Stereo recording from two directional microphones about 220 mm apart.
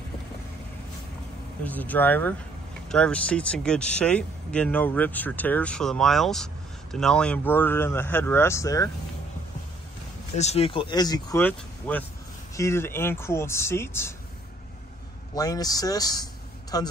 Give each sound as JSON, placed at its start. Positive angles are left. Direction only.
{"t": 1.6, "sound": "speech", "side_deg": 5}
{"t": 10.3, "sound": "speech", "side_deg": 30}
{"t": 15.3, "sound": "speech", "side_deg": 15}